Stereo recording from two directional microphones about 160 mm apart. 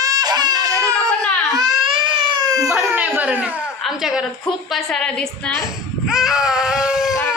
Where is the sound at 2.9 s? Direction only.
15° right (ahead or behind).